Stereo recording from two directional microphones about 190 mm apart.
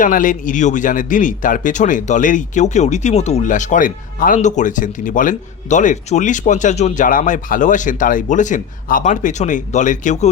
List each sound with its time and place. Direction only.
0.0 s speech: 45° left (ahead or behind)